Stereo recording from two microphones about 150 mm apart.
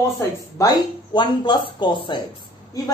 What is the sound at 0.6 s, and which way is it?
Speech, 20° left (ahead or behind).